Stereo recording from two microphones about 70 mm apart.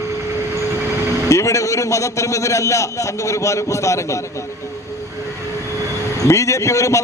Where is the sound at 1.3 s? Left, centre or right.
Left.